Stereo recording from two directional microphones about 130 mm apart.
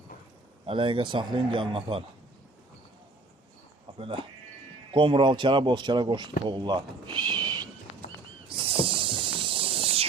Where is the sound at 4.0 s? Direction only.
40° right (ahead or behind).